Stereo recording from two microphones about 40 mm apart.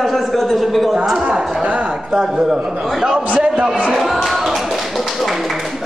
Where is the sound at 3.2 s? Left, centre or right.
Right.